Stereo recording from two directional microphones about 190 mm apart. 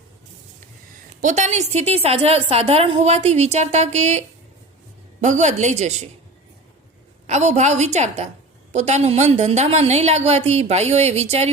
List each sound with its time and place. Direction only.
1.2 s a woman's voice: 40° right (ahead or behind)
5.2 s a woman's voice: 40° right (ahead or behind)
7.3 s a woman's voice: 35° right (ahead or behind)